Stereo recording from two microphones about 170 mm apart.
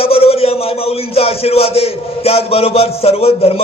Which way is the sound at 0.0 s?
35° left (ahead or behind).